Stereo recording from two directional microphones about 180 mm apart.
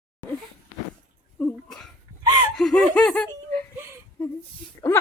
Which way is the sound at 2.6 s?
Centre (ahead or behind).